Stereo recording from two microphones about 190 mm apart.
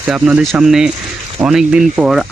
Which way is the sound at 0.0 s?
5° right (ahead or behind).